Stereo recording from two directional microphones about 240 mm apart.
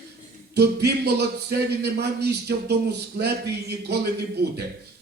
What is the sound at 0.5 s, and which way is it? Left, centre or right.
Speech, right.